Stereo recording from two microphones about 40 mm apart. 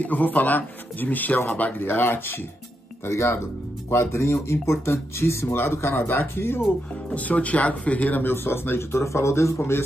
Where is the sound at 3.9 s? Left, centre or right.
Left.